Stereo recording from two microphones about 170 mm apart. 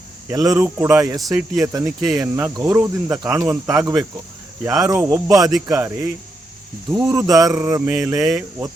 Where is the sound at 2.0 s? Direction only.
Centre (ahead or behind).